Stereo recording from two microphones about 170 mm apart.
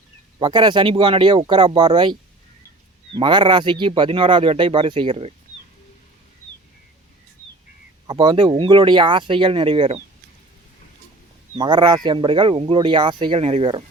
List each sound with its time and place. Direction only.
0.3 s speech: 30° right (ahead or behind)
3.2 s speech: 30° right (ahead or behind)
8.0 s speech: 25° right (ahead or behind)
11.5 s speech: 25° right (ahead or behind)